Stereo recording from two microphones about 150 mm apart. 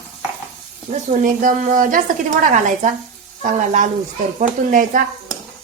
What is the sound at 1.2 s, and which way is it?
A woman's voice, 60° right (ahead or behind).